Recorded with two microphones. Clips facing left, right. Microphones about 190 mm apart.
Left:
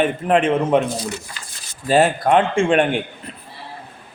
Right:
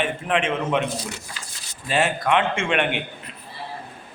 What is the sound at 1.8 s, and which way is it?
A man's voice, 35° left (ahead or behind).